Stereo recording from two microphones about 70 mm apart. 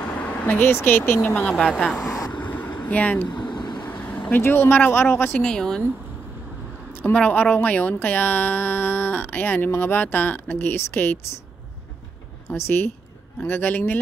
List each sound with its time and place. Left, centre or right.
0.0 s speech: centre; by 1.2 s left
1.6 s a woman's voice: centre
2.0 s vehicle: left
2.3 s vehicle: left
3.3 s vehicle: left
3.8 s speech: left
5.4 s a woman's voice: centre
7.2 s a woman's voice: left
12.4 s a woman's voice: left